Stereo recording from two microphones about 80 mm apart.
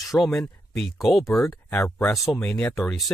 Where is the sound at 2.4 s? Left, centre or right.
Centre.